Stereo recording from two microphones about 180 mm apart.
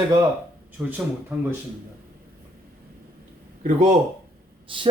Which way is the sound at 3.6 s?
40° right (ahead or behind).